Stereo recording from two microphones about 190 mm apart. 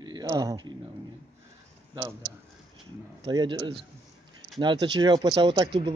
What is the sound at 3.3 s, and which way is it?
Speech, 20° right (ahead or behind).